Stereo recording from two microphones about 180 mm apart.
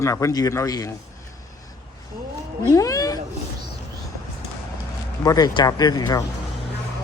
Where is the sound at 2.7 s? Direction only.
20° left (ahead or behind).